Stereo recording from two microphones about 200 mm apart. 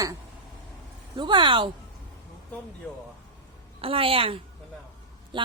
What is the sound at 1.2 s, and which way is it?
Speech, 25° right (ahead or behind).